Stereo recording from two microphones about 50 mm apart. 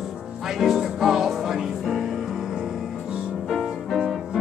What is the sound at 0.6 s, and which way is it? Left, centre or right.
Music, centre.